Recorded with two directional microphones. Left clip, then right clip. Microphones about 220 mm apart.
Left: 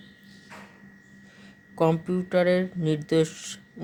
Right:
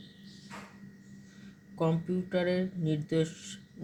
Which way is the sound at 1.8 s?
45° left (ahead or behind).